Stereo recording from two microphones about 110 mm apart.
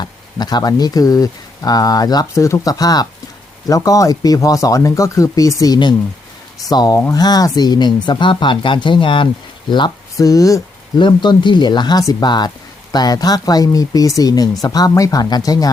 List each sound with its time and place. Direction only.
0.0 s speech: 40° left (ahead or behind)
11.0 s speech: 45° left (ahead or behind)